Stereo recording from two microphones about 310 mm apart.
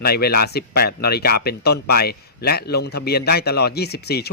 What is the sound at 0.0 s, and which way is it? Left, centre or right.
Speech, left.